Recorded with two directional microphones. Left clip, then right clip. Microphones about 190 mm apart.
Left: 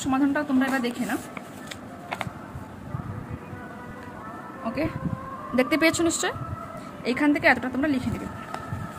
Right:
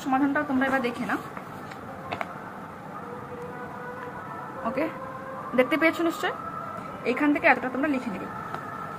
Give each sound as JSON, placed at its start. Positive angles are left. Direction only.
{"t": 0.1, "sound": "a woman's voice", "side_deg": 45}
{"t": 4.6, "sound": "speech", "side_deg": 25}
{"t": 5.6, "sound": "a woman's voice", "side_deg": 40}
{"t": 7.1, "sound": "a woman's voice", "side_deg": 35}